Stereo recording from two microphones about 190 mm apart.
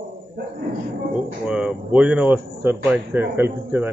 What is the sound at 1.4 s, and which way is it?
Speech, 5° right (ahead or behind).